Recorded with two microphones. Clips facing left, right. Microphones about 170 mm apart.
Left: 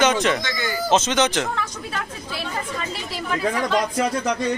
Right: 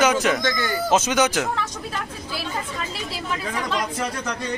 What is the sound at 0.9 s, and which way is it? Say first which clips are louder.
Speech: left 1 dB; 10° right (ahead or behind).